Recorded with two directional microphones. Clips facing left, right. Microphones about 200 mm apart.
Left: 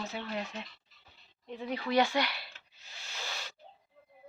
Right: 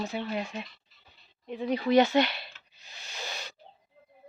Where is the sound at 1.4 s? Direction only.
15° right (ahead or behind).